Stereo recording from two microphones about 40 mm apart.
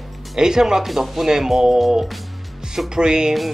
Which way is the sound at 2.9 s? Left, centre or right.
Centre.